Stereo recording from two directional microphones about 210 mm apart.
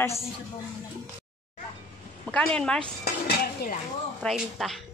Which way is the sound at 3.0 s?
50° left (ahead or behind).